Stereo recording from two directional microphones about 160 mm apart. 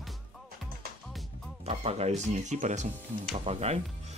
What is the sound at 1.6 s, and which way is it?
Speech, 40° right (ahead or behind).